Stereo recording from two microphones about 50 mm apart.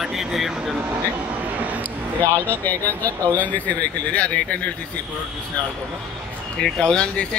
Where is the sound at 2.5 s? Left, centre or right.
Left.